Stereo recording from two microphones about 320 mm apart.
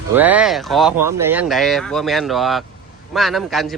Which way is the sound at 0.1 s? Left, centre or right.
Centre.